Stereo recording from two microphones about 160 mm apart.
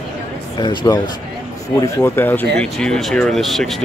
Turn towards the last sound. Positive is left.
turn(degrees=0)  # may be behind; listen again after turning